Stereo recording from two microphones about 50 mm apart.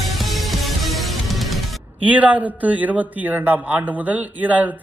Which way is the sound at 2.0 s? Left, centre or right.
Right.